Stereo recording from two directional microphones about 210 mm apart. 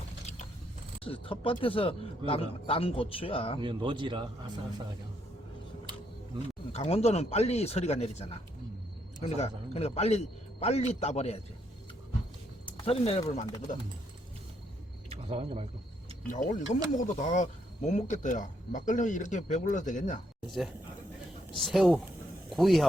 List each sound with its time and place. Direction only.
1.0 s speech: 25° left (ahead or behind)
3.6 s speech: 20° right (ahead or behind)
6.7 s speech: 30° left (ahead or behind)
9.2 s speech: 30° left (ahead or behind)
12.6 s speech: 25° left (ahead or behind)
15.1 s speech: 25° right (ahead or behind)
16.2 s speech: 40° left (ahead or behind)
21.6 s speech: centre (ahead or behind)